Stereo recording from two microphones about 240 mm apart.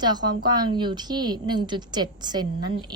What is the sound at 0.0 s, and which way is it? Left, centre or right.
A woman's voice, centre.